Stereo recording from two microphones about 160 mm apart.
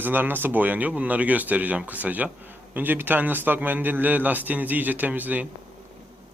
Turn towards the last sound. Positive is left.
turn(degrees=-10)  # may be behind; listen again after turning